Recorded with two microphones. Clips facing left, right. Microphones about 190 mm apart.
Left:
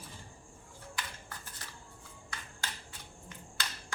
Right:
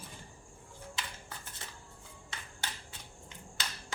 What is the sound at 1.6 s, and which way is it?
Shuffling cards, 20° right (ahead or behind).